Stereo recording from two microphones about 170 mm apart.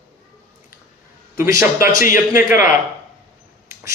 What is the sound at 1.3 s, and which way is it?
Speech, 15° right (ahead or behind).